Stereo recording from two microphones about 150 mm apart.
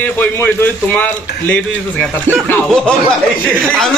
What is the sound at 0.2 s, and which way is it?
A man's voice, 15° left (ahead or behind).